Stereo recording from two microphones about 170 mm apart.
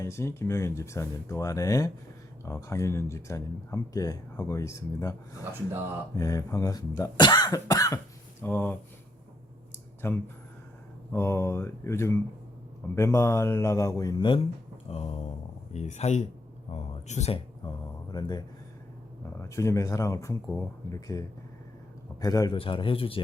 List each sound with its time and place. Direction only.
0.0 s speech: 15° left (ahead or behind)
6.1 s speech: 20° left (ahead or behind)
10.0 s speech: 15° left (ahead or behind); by 14.4 s 30° left (ahead or behind)
14.8 s a sound: 35° left (ahead or behind)
15.7 s speech: 40° left (ahead or behind)
17.6 s speech: 30° left (ahead or behind)
22.5 s speech: 30° left (ahead or behind)